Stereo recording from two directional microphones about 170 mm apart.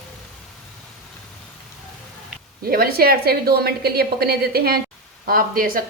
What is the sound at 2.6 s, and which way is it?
A woman's voice, 60° right (ahead or behind).